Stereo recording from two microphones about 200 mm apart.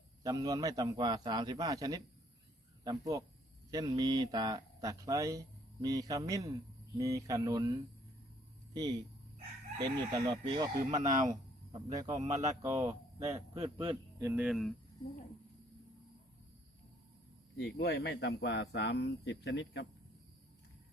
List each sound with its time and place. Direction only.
0.2 s a man's voice: 20° right (ahead or behind)
8.7 s a man's voice: 20° right (ahead or behind)
10.9 s speech: 40° right (ahead or behind)
12.5 s speech: 15° right (ahead or behind)
13.3 s a man's voice: 30° right (ahead or behind)
14.2 s speech: 10° right (ahead or behind)
17.7 s speech: 55° left (ahead or behind)